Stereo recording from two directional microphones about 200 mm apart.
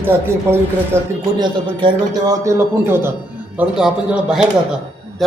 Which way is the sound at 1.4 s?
25° right (ahead or behind).